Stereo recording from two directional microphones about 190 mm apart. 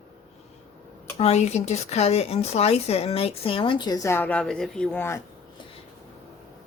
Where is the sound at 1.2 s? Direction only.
35° left (ahead or behind); by 5.2 s 10° left (ahead or behind).